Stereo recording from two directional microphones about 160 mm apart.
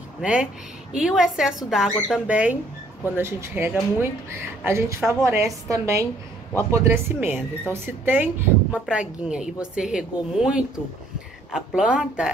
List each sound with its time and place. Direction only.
0.2 s a woman's voice: 5° right (ahead or behind)